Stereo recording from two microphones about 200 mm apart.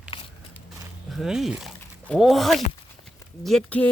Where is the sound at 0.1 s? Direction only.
25° left (ahead or behind).